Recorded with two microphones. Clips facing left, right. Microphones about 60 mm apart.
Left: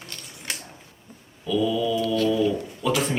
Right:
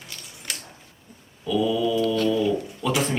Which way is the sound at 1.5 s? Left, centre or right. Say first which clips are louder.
Right 1 dB; centre.